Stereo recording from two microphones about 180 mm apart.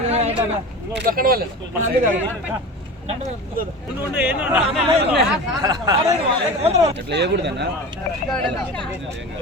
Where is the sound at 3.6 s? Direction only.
55° right (ahead or behind).